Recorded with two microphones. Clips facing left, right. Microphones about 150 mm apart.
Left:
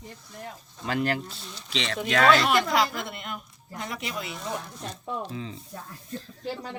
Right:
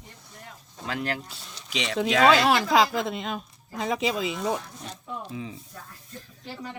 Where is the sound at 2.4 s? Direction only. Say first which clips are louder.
Right 2 dB; 90° right.